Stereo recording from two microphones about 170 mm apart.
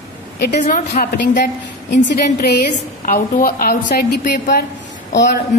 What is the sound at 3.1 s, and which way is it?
A woman's voice, 60° left (ahead or behind).